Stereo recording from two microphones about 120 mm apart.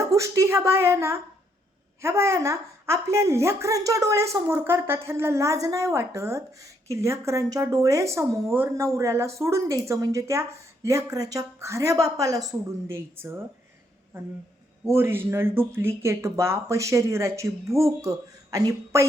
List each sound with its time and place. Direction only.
0.1 s speech: 25° right (ahead or behind)
14.8 s speech: 20° right (ahead or behind)